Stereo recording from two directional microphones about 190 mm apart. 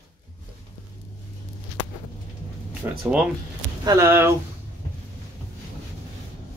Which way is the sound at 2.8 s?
15° right (ahead or behind).